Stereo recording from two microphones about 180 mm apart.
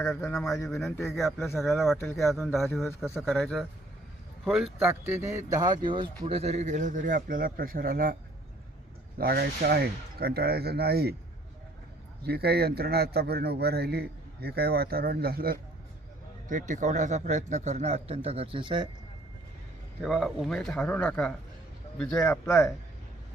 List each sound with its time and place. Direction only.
0.1 s a man's voice: centre (ahead or behind); by 11.1 s 60° right (ahead or behind)
12.2 s a man's voice: 60° right (ahead or behind)
16.5 s speech: 45° right (ahead or behind); by 18.9 s 25° right (ahead or behind)
20.0 s a man's voice: centre (ahead or behind)